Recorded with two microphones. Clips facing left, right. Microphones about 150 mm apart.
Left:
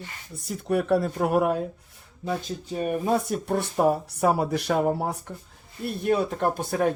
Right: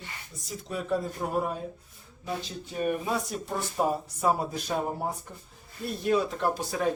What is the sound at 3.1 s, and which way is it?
Speech, 60° left (ahead or behind).